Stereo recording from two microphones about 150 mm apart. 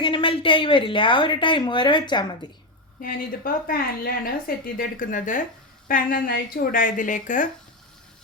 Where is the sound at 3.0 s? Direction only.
70° left (ahead or behind).